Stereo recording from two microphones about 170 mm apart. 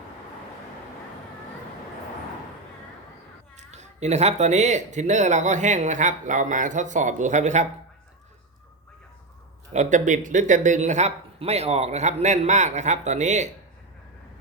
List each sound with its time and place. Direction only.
3.6 s speech: 40° right (ahead or behind)
9.7 s speech: 45° right (ahead or behind)